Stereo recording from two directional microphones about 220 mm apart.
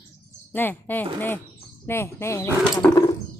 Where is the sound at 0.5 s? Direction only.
10° left (ahead or behind).